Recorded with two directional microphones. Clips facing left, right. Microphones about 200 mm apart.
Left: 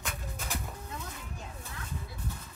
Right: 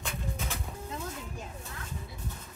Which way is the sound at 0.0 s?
Centre (ahead or behind).